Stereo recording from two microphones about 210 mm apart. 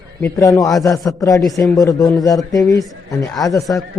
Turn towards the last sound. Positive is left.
turn(degrees=15)  # may be behind; listen again after turning